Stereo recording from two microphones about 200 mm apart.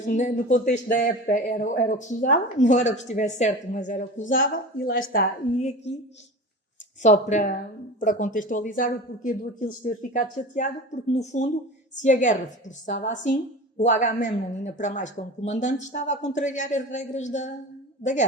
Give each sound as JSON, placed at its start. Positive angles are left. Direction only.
{"t": 0.2, "sound": "a woman's voice", "side_deg": 35}
{"t": 7.0, "sound": "a woman's voice", "side_deg": 35}